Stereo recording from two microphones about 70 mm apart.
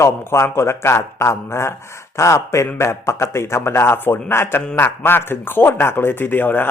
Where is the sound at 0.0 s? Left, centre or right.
Left.